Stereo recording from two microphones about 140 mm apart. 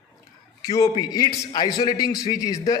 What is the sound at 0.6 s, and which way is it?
A man's voice, 25° left (ahead or behind).